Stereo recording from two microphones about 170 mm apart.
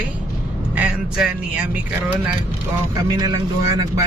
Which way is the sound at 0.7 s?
5° right (ahead or behind).